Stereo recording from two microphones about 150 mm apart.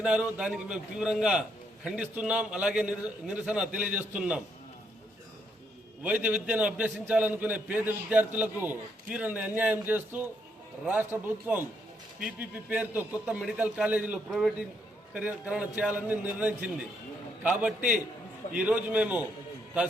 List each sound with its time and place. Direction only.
0.0 s a man's voice: 5° right (ahead or behind)
6.0 s a man's voice: 10° right (ahead or behind)